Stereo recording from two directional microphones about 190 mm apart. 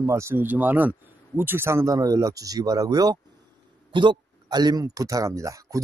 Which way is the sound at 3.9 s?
25° right (ahead or behind).